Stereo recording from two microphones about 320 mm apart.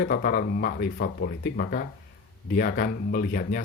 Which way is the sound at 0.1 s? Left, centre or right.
Left.